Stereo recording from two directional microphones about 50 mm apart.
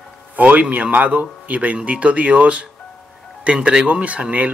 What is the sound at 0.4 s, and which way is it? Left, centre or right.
Speech, right.